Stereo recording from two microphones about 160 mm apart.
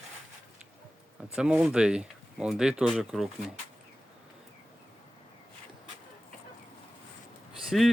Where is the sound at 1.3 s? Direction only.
5° right (ahead or behind).